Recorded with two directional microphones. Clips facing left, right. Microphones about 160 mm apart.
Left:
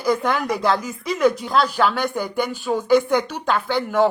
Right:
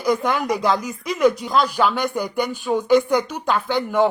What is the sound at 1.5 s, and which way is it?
Speech, 10° right (ahead or behind).